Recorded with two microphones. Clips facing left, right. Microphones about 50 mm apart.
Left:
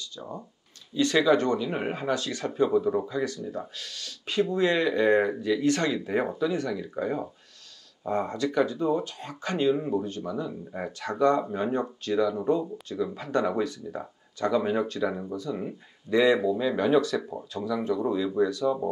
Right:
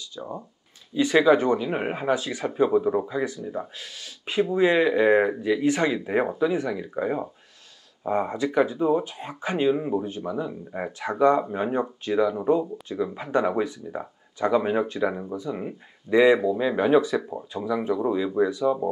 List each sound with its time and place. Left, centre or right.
0.1 s speech: centre